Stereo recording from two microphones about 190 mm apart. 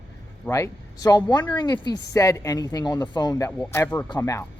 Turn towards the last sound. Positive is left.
turn(degrees=15)  # may be behind; listen again after turning